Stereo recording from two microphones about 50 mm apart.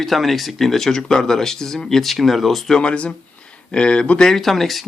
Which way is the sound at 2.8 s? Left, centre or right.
Left.